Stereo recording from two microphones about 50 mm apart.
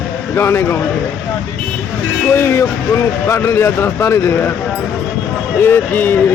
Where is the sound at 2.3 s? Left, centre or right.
Left.